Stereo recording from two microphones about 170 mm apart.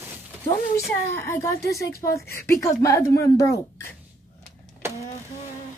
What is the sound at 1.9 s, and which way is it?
Speech, 60° left (ahead or behind).